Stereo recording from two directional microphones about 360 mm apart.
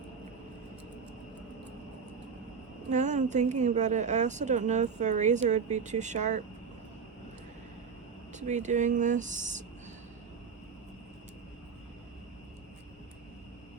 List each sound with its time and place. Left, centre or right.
2.9 s a woman's voice: centre
8.3 s a woman's voice: centre